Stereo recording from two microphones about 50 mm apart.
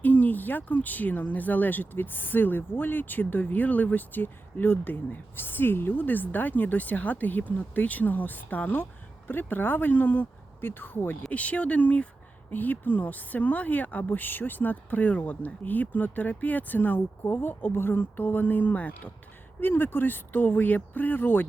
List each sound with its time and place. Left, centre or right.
0.0 s speech: left
11.3 s speech: left
19.5 s speech: left